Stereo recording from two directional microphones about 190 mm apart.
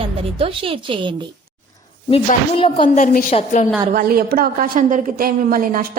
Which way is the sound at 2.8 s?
40° left (ahead or behind).